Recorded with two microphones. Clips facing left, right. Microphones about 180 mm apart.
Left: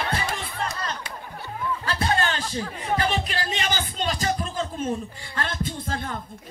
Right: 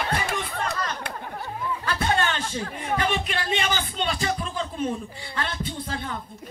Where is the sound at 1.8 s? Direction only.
35° left (ahead or behind).